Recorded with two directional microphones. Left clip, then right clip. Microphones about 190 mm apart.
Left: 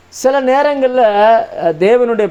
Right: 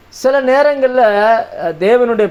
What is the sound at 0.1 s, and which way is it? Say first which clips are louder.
Speech: even; 35° left (ahead or behind).